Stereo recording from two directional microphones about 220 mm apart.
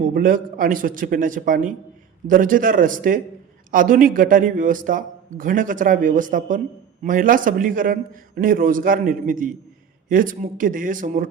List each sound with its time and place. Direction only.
0.1 s a man's voice: 40° right (ahead or behind)